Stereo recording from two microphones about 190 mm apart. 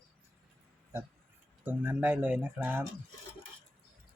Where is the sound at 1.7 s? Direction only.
10° right (ahead or behind).